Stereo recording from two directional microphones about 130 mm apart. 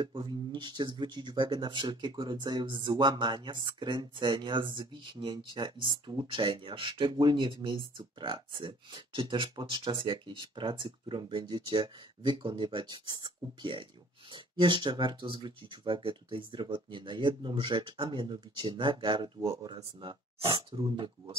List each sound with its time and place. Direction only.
0.0 s speech: 40° right (ahead or behind)